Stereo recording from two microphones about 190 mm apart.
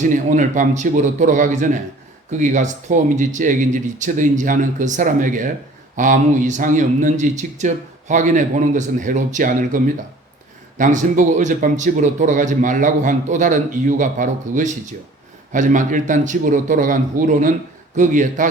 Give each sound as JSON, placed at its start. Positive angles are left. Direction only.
{"t": 0.0, "sound": "a man's voice", "side_deg": -40}